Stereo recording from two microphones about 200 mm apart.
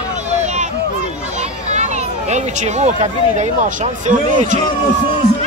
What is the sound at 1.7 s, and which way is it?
Speech, 35° right (ahead or behind).